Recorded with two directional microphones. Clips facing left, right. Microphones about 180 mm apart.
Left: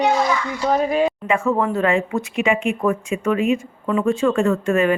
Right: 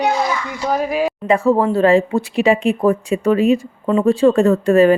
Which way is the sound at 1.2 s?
35° right (ahead or behind).